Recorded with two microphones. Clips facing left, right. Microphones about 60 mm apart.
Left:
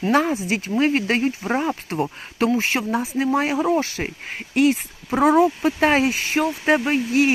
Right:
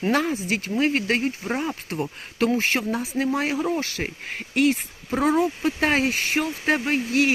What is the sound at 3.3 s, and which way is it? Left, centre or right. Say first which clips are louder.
Speech: left 6 dB; left.